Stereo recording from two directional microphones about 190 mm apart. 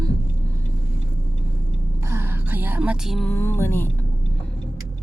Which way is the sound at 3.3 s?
10° left (ahead or behind).